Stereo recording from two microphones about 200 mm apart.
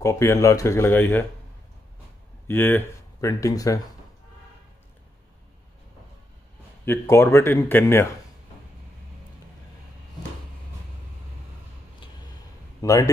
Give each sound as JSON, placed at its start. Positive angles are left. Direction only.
{"t": 0.0, "sound": "speech", "side_deg": 15}
{"t": 2.4, "sound": "speech", "side_deg": 10}
{"t": 6.9, "sound": "speech", "side_deg": 10}
{"t": 12.8, "sound": "speech", "side_deg": 15}